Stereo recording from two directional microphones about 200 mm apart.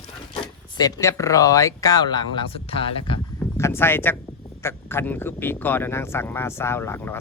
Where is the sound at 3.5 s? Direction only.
15° left (ahead or behind).